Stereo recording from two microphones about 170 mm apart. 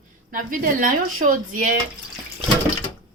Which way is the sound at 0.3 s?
55° right (ahead or behind).